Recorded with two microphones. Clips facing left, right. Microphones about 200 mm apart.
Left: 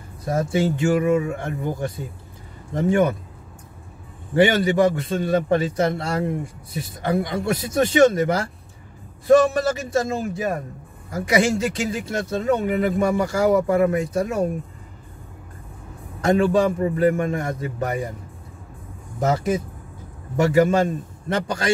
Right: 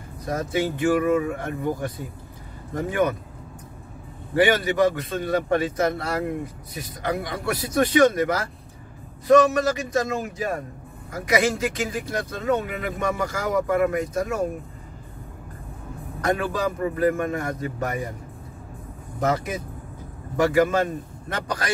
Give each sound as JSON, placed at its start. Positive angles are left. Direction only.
{"t": 0.2, "sound": "a man's voice", "side_deg": 30}
{"t": 4.4, "sound": "a man's voice", "side_deg": 25}
{"t": 16.2, "sound": "a man's voice", "side_deg": 25}
{"t": 19.1, "sound": "a man's voice", "side_deg": 25}